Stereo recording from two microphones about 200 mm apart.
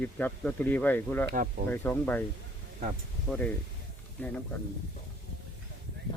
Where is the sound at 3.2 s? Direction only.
5° left (ahead or behind).